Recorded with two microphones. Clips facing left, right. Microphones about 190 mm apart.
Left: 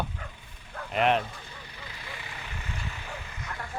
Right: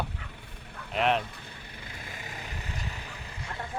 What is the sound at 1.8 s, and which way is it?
Vehicle, 50° right (ahead or behind).